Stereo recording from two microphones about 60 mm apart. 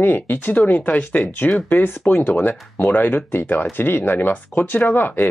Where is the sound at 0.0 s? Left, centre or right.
Left.